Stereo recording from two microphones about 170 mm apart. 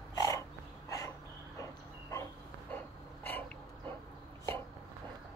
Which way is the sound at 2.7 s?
10° left (ahead or behind).